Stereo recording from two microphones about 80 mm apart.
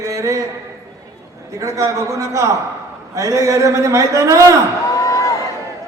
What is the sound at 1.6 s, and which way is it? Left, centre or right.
A man's voice, right.